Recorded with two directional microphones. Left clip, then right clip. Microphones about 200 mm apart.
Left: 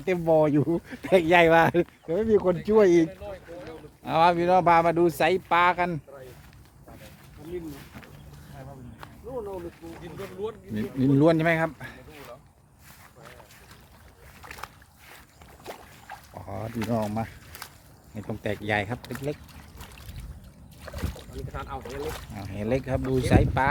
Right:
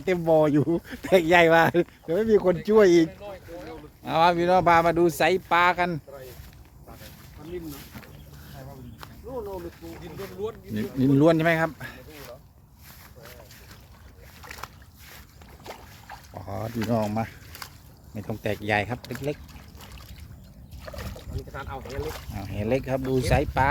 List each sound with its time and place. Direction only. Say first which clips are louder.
0.0 s speech: right 1 dB; 10° right (ahead or behind)
9.0 s a sound: even; 10° right (ahead or behind)
10.0 s speech: right 1 dB; 10° right (ahead or behind)
14.4 s splash: right 1 dB; centre (ahead or behind)
15.6 s boat: even; 5° left (ahead or behind)
16.3 s speech: right 3 dB; 20° right (ahead or behind)
17.5 s a sound: right 1 dB; 10° left (ahead or behind)
18.1 s speech: right 2 dB; 10° right (ahead or behind)
20.8 s boat: even; 15° left (ahead or behind)
21.5 s speech: even; 10° right (ahead or behind)
21.8 s speech: even; 15° left (ahead or behind)
22.4 s speech: right 2 dB; 5° right (ahead or behind)